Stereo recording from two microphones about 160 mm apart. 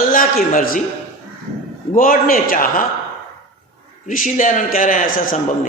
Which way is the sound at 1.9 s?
60° left (ahead or behind).